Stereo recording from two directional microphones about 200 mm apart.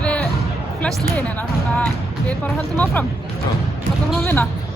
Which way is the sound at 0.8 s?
10° left (ahead or behind).